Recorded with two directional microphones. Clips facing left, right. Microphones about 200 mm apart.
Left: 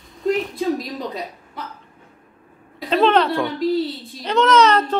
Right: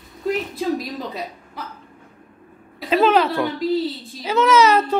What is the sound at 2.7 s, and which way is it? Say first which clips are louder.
A child's voice: even; 5° right (ahead or behind).